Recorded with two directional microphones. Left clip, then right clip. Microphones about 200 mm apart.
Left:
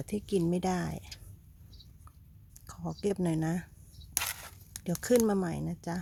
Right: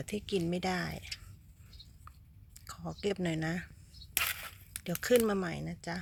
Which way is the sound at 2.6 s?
35° left (ahead or behind).